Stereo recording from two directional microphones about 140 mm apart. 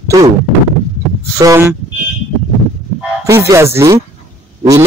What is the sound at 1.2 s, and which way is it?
Speech, 20° right (ahead or behind).